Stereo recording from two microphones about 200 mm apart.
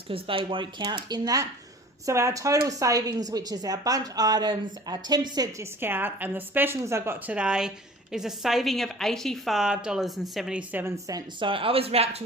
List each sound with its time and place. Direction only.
0.1 s a woman's voice: 25° right (ahead or behind)